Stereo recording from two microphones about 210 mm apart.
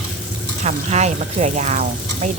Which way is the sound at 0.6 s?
30° right (ahead or behind).